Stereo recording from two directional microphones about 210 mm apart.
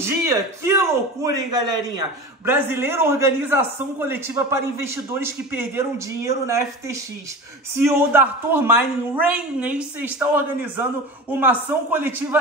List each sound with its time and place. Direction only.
0.0 s a man's voice: 10° right (ahead or behind)